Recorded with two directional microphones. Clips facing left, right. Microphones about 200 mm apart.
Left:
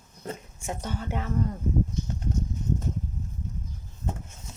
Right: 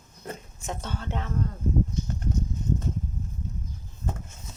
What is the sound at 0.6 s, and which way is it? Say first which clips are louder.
Speech: left 1 dB; 15° left (ahead or behind).